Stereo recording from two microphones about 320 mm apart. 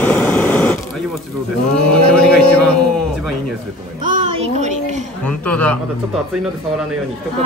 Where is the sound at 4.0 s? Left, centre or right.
Right.